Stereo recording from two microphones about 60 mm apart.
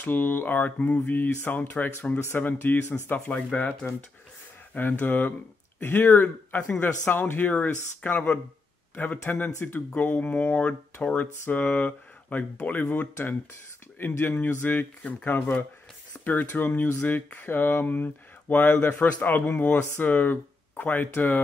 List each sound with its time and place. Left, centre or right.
0.0 s speech: left
2.1 s speech: left
2.4 s speech: left
3.5 s speech: left
4.7 s speech: left